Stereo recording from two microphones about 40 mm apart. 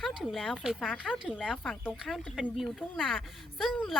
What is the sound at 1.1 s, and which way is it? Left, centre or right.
Speech, centre.